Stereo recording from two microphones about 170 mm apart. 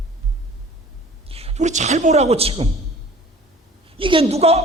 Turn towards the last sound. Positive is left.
turn(degrees=-35)  # may be behind; listen again after turning